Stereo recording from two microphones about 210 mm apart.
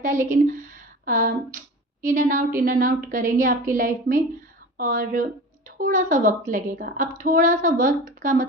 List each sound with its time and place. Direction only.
0.0 s a woman's voice: 40° right (ahead or behind)